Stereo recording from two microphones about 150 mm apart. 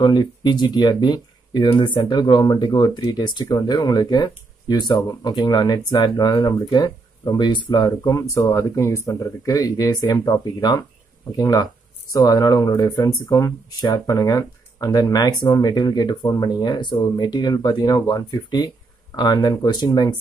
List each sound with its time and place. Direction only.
0.0 s speech: 30° left (ahead or behind)